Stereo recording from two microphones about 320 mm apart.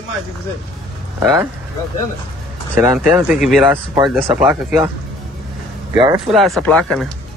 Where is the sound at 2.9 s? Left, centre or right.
Centre.